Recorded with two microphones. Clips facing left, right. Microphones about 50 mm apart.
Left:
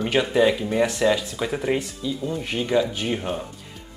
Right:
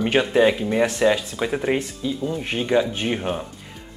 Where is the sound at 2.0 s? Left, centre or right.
Right.